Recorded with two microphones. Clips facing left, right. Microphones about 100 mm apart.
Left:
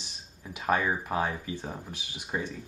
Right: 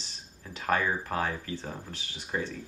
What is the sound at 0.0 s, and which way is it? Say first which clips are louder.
Speech: left 1 dB; 15° left (ahead or behind).